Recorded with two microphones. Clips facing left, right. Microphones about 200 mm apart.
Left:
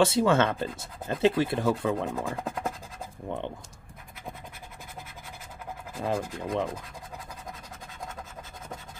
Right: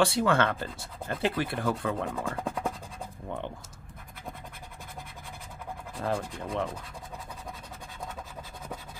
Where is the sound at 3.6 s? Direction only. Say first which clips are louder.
Even; centre (ahead or behind).